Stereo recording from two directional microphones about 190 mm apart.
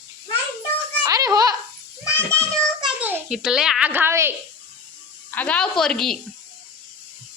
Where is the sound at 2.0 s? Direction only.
15° left (ahead or behind).